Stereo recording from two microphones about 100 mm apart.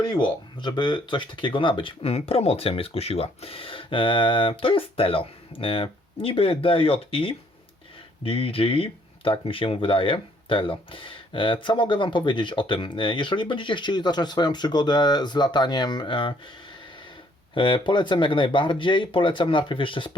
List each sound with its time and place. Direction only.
0.0 s speech: 45° left (ahead or behind)
17.5 s speech: 55° left (ahead or behind)